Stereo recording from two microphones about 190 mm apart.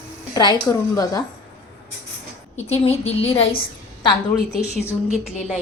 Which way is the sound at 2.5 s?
35° left (ahead or behind).